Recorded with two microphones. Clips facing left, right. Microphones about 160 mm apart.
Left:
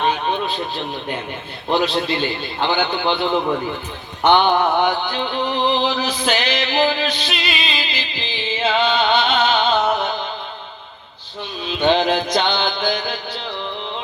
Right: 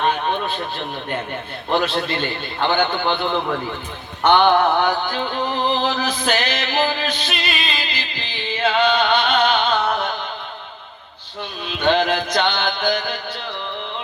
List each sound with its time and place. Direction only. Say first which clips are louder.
0.0 s a sound: even; 15° left (ahead or behind)
1.7 s a man's voice: left 2 dB; 55° right (ahead or behind)
2.9 s mantra: left 2 dB; 15° left (ahead or behind)
5.1 s a man's voice: left 1 dB; 45° right (ahead or behind)
5.5 s music: left 2 dB; 45° right (ahead or behind)
11.9 s mantra: left 1 dB; 15° left (ahead or behind)
12.3 s music: left 1 dB; 55° right (ahead or behind)